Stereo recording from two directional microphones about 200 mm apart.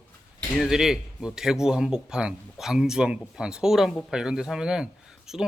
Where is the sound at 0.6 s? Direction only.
Centre (ahead or behind).